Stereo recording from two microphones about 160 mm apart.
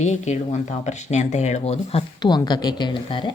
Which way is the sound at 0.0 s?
45° left (ahead or behind).